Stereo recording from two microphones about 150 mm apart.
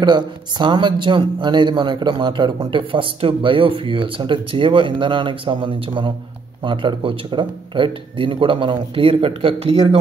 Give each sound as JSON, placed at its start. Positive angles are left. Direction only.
{"t": 0.0, "sound": "a man's voice", "side_deg": -30}